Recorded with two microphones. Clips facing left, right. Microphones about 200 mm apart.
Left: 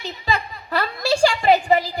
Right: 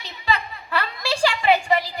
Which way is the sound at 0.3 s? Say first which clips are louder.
Even; 40° left (ahead or behind).